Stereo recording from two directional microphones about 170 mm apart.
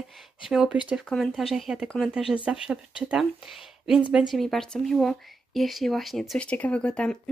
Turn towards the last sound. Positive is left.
turn(degrees=5)  # may be behind; listen again after turning